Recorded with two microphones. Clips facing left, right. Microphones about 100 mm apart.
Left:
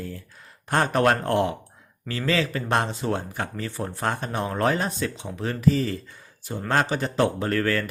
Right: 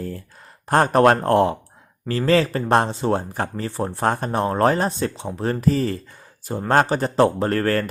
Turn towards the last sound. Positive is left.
turn(degrees=-40)  # may be behind; listen again after turning